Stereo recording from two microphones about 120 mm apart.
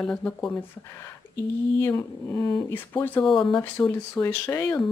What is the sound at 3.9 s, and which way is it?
Speech, 15° left (ahead or behind).